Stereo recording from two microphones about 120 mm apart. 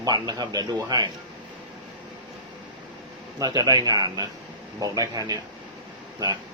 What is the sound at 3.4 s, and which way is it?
Speech, 35° right (ahead or behind).